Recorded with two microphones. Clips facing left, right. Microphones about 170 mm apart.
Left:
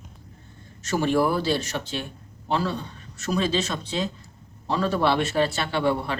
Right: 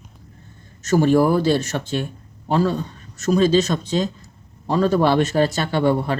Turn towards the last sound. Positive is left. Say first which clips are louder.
# right 5 dB
turn(degrees=-40)  # may be behind; listen again after turning